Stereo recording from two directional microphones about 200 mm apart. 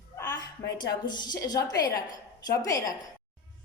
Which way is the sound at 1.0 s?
20° left (ahead or behind).